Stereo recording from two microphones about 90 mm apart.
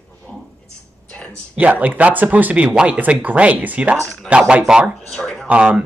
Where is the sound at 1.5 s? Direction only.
15° right (ahead or behind).